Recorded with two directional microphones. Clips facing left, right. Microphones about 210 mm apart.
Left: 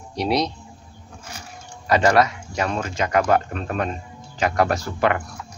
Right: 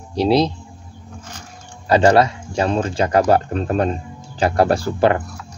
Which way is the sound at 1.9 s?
30° right (ahead or behind).